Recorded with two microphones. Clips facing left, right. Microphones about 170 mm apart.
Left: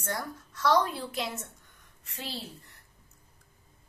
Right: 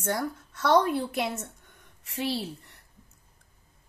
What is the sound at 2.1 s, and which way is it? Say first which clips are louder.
Speech: right 10 dB; 70° right (ahead or behind).